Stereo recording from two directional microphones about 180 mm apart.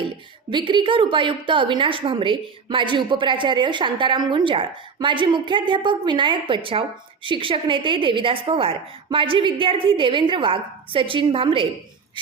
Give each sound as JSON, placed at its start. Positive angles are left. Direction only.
{"t": 0.5, "sound": "a woman's voice", "side_deg": -25}